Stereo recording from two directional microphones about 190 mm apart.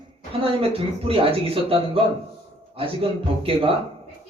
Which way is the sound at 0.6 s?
30° right (ahead or behind).